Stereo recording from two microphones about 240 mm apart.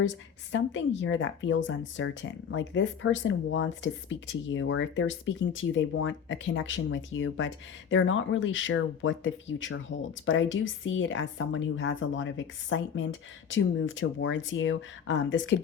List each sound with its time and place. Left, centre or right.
0.5 s speech: left